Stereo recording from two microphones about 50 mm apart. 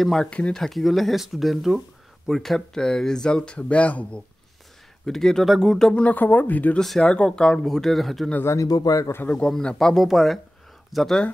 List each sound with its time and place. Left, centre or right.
0.2 s speech: left
0.5 s speech: centre; by 4.2 s left
5.0 s speech: centre
5.5 s speech: centre
5.9 s speech: left
6.8 s speech: centre
7.1 s speech: centre
8.5 s speech: left
9.6 s speech: centre
9.9 s speech: centre